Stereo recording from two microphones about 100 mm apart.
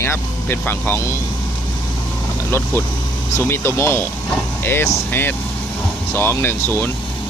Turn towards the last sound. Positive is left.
turn(degrees=20)  # may be behind; listen again after turning